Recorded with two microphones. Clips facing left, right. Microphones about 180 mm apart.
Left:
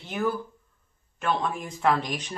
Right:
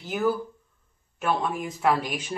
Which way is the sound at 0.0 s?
Centre (ahead or behind).